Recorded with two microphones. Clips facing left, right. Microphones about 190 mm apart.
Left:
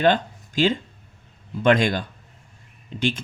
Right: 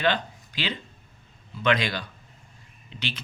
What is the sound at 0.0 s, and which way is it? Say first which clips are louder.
Speech: left 6 dB; 45° left (ahead or behind).